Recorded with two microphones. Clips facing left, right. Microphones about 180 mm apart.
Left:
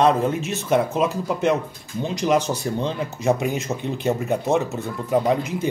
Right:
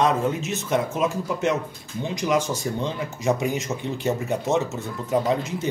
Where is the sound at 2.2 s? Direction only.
20° left (ahead or behind).